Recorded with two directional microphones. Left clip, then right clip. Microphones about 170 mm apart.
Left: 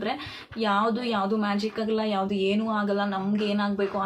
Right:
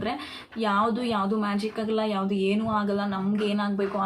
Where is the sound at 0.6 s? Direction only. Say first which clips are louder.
Even; 5° right (ahead or behind).